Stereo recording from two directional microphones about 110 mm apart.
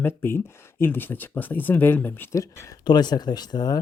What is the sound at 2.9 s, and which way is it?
Speech, 40° left (ahead or behind).